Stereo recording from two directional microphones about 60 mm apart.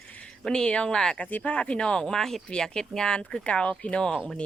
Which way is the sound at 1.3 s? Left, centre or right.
Left.